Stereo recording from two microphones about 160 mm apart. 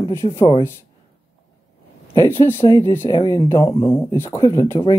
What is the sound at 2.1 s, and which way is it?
Speech, 15° left (ahead or behind).